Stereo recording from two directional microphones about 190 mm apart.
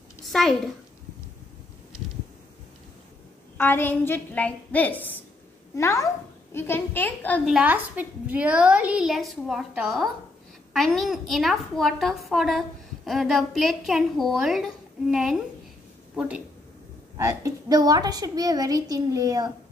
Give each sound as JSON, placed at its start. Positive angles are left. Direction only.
{"t": 0.3, "sound": "a child's voice", "side_deg": 0}
{"t": 3.5, "sound": "a woman's voice", "side_deg": 10}
{"t": 7.5, "sound": "a woman's voice", "side_deg": -10}